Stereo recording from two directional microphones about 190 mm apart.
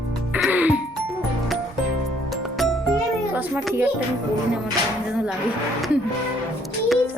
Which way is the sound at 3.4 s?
10° right (ahead or behind).